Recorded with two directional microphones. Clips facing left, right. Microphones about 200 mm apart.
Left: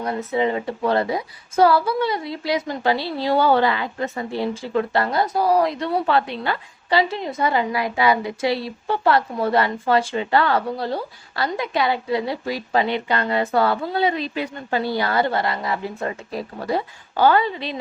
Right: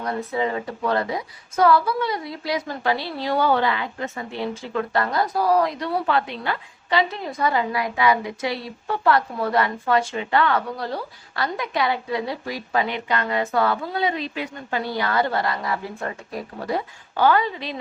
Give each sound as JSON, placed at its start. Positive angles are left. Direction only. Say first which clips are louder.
{"t": 0.0, "sound": "a woman's voice", "louder": "left 3 dB", "side_deg": 25}